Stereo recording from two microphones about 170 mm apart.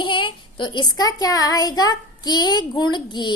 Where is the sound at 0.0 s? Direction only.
30° left (ahead or behind).